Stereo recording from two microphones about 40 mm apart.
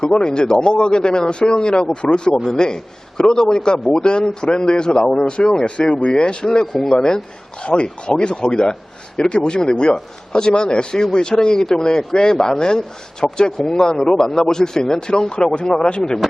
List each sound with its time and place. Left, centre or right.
0.3 s a man's voice: centre
5.6 s a man's voice: left